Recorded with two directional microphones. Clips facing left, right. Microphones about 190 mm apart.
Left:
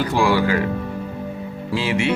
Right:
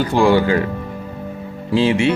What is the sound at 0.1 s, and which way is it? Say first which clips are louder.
Speech: right 5 dB; 25° right (ahead or behind).